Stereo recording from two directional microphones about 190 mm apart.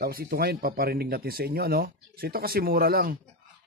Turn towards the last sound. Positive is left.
turn(degrees=-50)  # may be behind; listen again after turning